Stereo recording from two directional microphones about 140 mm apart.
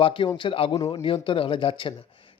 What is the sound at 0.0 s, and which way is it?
A man's voice, 40° left (ahead or behind).